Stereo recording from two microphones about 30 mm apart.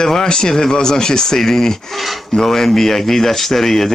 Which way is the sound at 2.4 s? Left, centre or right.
Centre.